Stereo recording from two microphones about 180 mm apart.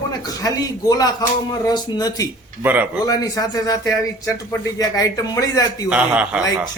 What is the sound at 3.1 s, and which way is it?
A man's voice, 20° left (ahead or behind).